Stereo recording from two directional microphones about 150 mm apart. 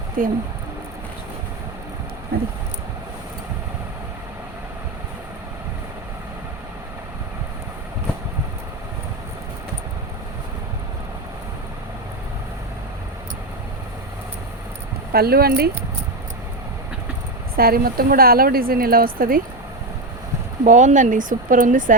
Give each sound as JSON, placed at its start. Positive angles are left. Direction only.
{"t": 0.2, "sound": "speech", "side_deg": -65}
{"t": 2.3, "sound": "speech", "side_deg": -90}
{"t": 15.1, "sound": "speech", "side_deg": -90}
{"t": 17.6, "sound": "a woman's voice", "side_deg": -90}
{"t": 20.7, "sound": "speech", "side_deg": -55}